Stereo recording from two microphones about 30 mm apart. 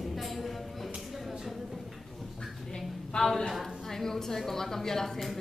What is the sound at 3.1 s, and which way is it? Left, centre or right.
Speech, left.